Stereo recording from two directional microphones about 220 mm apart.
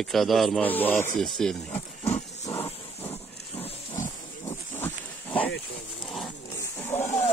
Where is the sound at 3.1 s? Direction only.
25° left (ahead or behind).